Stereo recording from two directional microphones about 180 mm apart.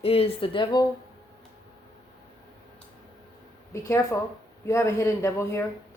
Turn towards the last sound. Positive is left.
turn(degrees=15)  # may be behind; listen again after turning